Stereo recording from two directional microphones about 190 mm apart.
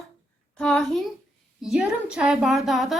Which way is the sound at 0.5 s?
5° left (ahead or behind).